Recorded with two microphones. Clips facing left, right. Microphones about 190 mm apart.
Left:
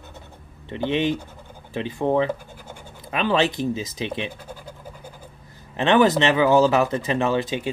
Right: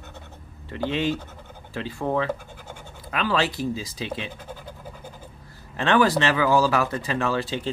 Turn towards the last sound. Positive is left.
turn(degrees=20)  # may be behind; listen again after turning